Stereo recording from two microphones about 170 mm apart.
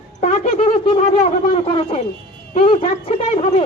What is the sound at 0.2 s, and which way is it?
Speech, 40° left (ahead or behind).